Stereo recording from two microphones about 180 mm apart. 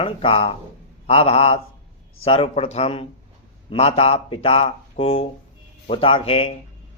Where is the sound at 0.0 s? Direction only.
30° left (ahead or behind).